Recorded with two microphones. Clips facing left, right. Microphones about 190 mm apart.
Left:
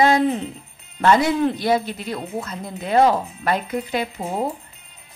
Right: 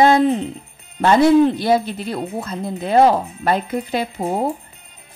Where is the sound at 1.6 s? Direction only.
30° right (ahead or behind).